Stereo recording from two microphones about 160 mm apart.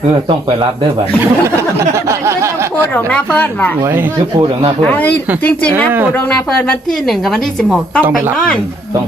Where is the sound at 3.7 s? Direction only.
15° right (ahead or behind).